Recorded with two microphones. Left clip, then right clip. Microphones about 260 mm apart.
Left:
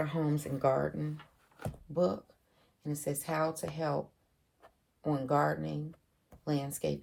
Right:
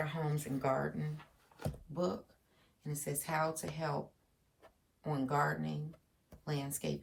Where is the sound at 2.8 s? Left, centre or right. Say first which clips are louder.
Left 5 dB; centre.